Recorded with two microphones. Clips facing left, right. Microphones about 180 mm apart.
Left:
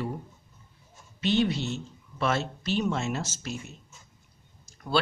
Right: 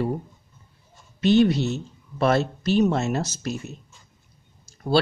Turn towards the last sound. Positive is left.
turn(degrees=-30)  # may be behind; listen again after turning